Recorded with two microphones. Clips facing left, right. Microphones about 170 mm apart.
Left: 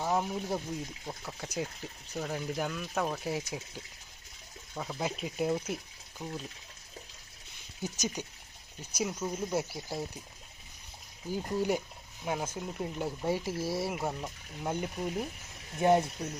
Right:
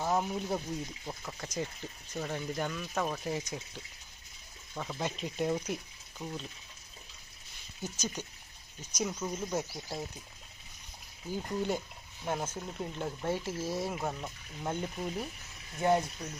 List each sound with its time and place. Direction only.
0.0 s speech: centre (ahead or behind)
4.7 s speech: 5° left (ahead or behind)
7.8 s speech: 15° left (ahead or behind)
11.3 s speech: 10° left (ahead or behind)
15.8 s speech: 20° left (ahead or behind)